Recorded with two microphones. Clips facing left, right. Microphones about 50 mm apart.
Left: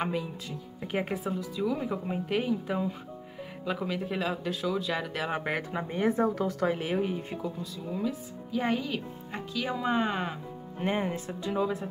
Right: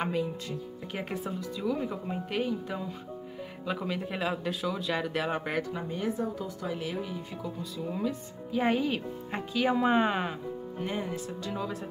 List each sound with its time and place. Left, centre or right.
0.9 s speech: centre
3.6 s speech: centre
5.6 s speech: left
6.1 s a woman's voice: left
6.7 s speech: left
7.8 s speech: centre
10.8 s speech: left
11.3 s speech: centre